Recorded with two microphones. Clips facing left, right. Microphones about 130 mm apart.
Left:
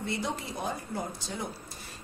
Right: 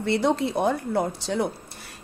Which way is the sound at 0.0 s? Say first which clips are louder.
Right 11 dB; 70° right (ahead or behind).